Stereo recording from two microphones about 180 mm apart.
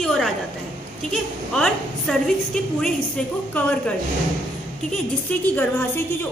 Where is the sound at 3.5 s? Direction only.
10° left (ahead or behind).